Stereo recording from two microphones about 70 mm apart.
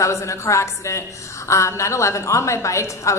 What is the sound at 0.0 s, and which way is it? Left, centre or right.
A woman's voice, left.